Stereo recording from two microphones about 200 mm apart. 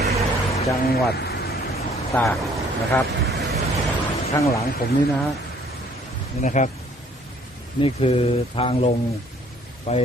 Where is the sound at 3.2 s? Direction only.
55° right (ahead or behind).